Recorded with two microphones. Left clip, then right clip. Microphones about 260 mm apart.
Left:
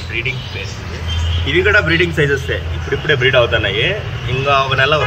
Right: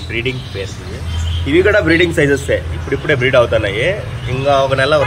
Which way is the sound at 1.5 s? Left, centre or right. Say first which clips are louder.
Right 1 dB; right.